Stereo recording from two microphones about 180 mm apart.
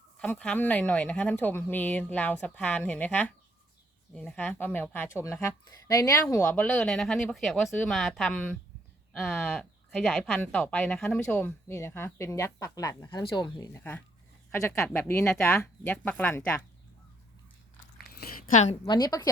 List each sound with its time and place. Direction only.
0.2 s speech: 10° left (ahead or behind)
18.1 s a sound: 55° left (ahead or behind)
18.9 s a woman's voice: 20° left (ahead or behind)